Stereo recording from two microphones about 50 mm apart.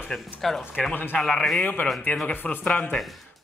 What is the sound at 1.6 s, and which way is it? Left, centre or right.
Speech, left.